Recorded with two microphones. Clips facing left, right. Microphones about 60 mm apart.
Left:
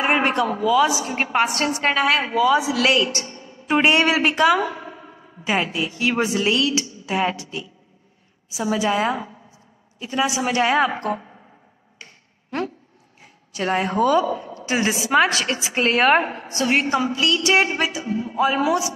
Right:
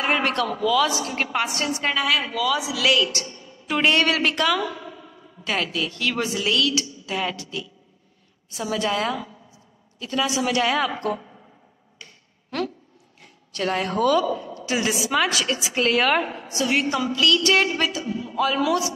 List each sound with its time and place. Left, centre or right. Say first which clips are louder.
0.0 s a man's voice: left 3 dB; left
1.4 s a woman's voice: left 5 dB; left
1.8 s a woman's voice: left 4 dB; left; by 4.6 s centre
4.6 s a sound: left 3 dB; left
5.4 s a woman's voice: left 3 dB; centre
8.5 s a woman's voice: left 3 dB; centre
8.9 s a woman's voice: left 3 dB; left
12.0 s a sound: left 2 dB; left
13.2 s a woman's voice: left 1 dB; centre; by 16.4 s left
16.4 s a woman's voice: left 2 dB; left